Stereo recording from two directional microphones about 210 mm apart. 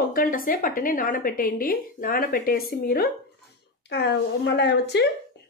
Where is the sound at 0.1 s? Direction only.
40° left (ahead or behind).